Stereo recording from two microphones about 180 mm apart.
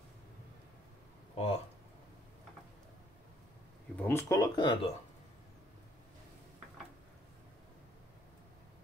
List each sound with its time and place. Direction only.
1.3 s speech: 35° left (ahead or behind)
3.9 s speech: 10° left (ahead or behind)